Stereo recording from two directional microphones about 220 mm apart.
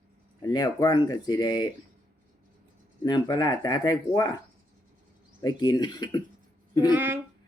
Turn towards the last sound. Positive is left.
turn(degrees=-10)  # may be behind; listen again after turning